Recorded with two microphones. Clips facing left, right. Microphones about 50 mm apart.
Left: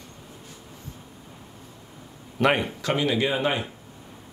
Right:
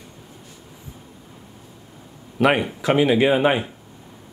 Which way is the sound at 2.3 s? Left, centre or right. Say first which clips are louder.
Right 4 dB; centre.